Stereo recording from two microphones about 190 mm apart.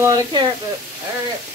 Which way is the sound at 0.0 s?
20° right (ahead or behind).